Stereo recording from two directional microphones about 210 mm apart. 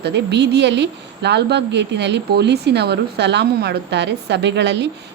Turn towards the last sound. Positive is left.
turn(degrees=-55)  # may be behind; listen again after turning